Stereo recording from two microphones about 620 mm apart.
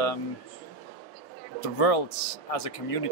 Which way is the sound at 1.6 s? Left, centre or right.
Left.